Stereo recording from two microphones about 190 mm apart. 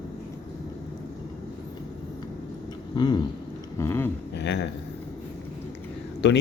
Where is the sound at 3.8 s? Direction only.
10° left (ahead or behind).